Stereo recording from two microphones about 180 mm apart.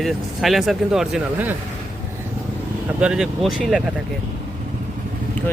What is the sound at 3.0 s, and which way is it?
Speech, 5° right (ahead or behind).